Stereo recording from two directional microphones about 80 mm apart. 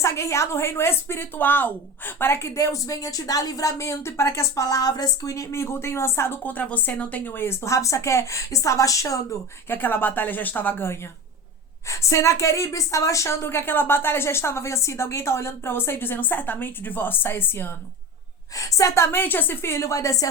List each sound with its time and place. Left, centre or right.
0.0 s speech: left
2.6 s speech: left
9.6 s speech: left
11.9 s speech: left
18.5 s speech: left